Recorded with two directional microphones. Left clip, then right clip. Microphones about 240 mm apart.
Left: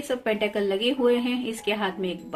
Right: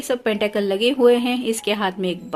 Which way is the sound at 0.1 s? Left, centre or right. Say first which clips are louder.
Right 5 dB; right.